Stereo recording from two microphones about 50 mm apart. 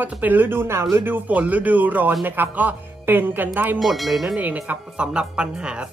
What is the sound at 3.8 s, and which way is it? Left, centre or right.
Speech, centre.